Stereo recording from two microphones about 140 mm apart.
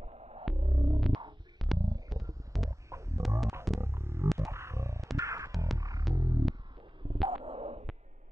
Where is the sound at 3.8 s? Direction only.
20° right (ahead or behind).